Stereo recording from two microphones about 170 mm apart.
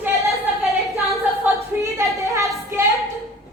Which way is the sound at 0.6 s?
Centre (ahead or behind).